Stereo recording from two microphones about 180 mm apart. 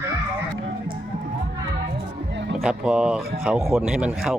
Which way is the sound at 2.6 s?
5° right (ahead or behind).